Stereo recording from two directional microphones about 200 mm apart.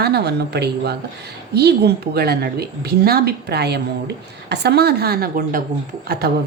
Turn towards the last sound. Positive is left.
turn(degrees=-50)  # may be behind; listen again after turning